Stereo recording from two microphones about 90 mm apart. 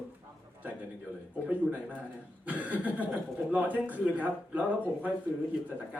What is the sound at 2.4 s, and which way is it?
Speech, 15° right (ahead or behind).